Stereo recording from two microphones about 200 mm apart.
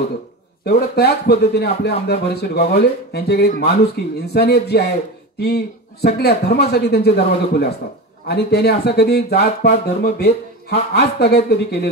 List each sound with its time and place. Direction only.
0.7 s speech: 55° left (ahead or behind)
8.3 s speech: 55° left (ahead or behind)